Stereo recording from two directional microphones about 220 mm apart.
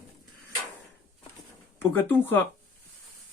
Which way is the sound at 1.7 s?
10° left (ahead or behind).